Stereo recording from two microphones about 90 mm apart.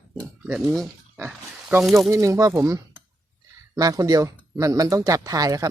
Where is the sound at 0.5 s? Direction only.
Centre (ahead or behind).